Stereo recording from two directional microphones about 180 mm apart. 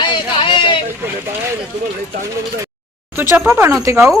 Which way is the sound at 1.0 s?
15° right (ahead or behind).